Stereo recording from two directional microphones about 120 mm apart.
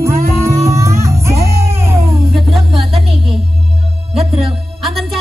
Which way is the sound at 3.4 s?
55° right (ahead or behind).